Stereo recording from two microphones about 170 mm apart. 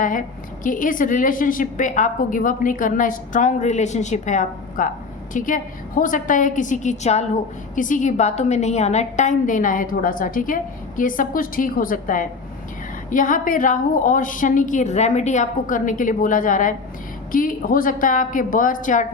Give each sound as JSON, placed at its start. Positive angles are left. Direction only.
{"t": 0.0, "sound": "a woman's voice", "side_deg": 50}